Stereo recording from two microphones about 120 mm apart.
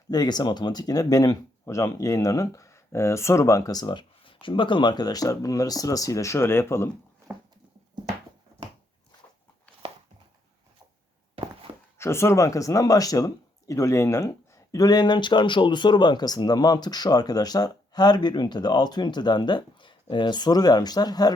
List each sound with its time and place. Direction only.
0.1 s speech: 35° left (ahead or behind)
11.4 s a sound: 50° right (ahead or behind)
11.9 s speech: 20° left (ahead or behind)